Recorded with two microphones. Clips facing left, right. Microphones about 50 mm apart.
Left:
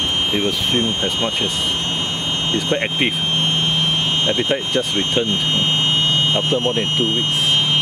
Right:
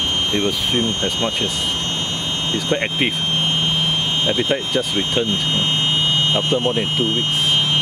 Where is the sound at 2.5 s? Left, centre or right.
Centre.